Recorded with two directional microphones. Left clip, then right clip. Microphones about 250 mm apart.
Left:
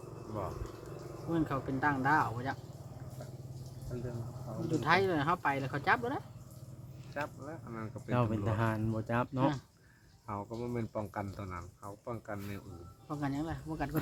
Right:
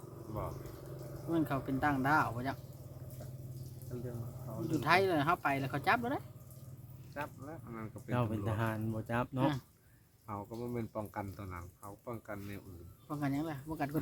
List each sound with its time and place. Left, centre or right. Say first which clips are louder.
1.3 s speech: even; right
4.8 s speech: even; right
7.2 s speech: left 3 dB; centre
13.1 s speech: even; right